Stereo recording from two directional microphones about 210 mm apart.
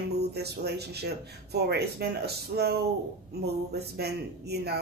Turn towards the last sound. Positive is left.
turn(degrees=-50)  # may be behind; listen again after turning